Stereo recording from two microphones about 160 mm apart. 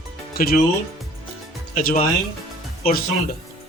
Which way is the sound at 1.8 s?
60° left (ahead or behind).